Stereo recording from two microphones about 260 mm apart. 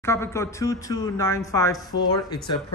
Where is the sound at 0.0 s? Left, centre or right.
Centre.